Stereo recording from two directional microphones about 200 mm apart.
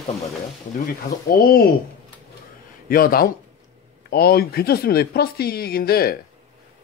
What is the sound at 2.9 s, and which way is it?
Speech, 45° left (ahead or behind).